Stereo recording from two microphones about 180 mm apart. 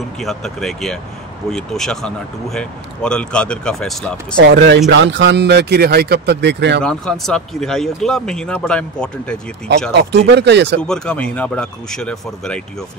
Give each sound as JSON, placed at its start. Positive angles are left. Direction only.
{"t": 0.2, "sound": "a man's voice", "side_deg": 0}
{"t": 4.4, "sound": "speech", "side_deg": -75}
{"t": 6.8, "sound": "a man's voice", "side_deg": 5}
{"t": 10.1, "sound": "speech", "side_deg": -70}
{"t": 10.8, "sound": "a man's voice", "side_deg": 5}